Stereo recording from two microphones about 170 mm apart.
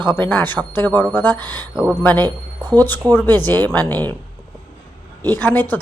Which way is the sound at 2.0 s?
10° left (ahead or behind).